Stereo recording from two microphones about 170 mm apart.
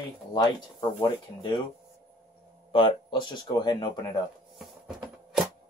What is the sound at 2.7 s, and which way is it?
Speech, 30° left (ahead or behind).